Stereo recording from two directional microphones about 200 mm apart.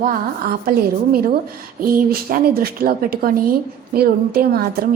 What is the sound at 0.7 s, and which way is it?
A woman's voice, 45° right (ahead or behind).